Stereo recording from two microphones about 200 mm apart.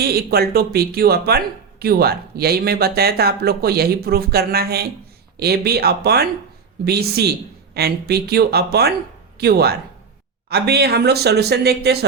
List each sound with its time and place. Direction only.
0.0 s speech: 50° right (ahead or behind)